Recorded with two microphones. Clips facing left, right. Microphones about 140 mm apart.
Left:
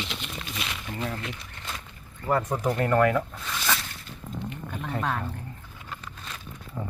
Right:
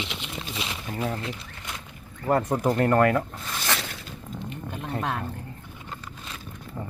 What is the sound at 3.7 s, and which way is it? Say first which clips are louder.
Zipper: even; 90° right.